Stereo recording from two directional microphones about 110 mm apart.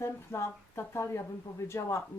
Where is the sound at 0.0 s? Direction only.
25° left (ahead or behind).